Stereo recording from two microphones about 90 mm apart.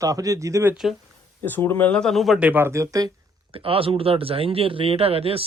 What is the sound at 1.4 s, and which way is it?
Speech, 25° left (ahead or behind).